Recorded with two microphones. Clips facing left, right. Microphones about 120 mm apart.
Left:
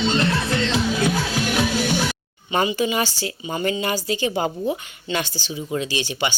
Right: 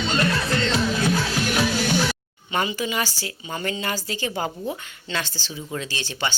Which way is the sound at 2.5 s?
20° left (ahead or behind).